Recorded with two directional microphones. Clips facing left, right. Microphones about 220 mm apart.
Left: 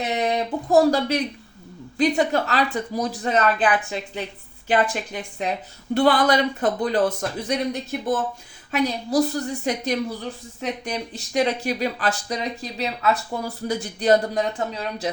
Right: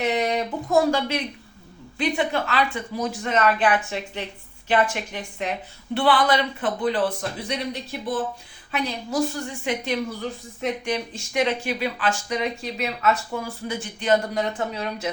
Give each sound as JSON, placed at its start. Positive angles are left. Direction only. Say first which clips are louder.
{"t": 0.0, "sound": "speech", "louder": "even", "side_deg": 35}
{"t": 4.7, "sound": "a man's voice", "louder": "left 1 dB", "side_deg": 35}